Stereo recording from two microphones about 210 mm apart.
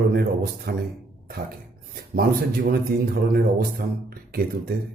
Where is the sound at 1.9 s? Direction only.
45° right (ahead or behind).